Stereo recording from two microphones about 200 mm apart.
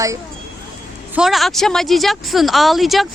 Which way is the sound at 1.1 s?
Centre (ahead or behind).